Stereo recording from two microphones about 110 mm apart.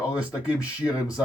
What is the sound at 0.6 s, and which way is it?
Speech, 35° left (ahead or behind).